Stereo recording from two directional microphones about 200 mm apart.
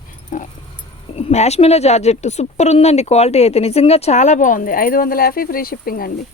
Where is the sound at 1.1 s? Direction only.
30° left (ahead or behind).